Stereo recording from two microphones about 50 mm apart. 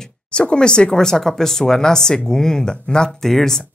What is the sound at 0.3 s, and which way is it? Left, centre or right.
Speech, left.